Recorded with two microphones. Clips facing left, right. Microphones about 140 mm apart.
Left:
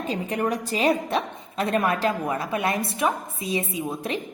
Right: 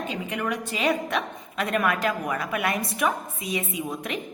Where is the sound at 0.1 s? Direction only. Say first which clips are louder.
Left 7 dB; 35° left (ahead or behind).